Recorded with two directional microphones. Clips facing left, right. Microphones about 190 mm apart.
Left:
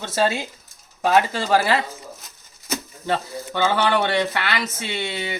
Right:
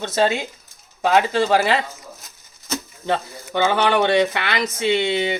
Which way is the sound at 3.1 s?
20° right (ahead or behind).